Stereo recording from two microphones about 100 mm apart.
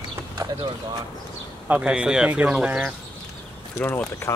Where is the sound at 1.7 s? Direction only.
10° right (ahead or behind).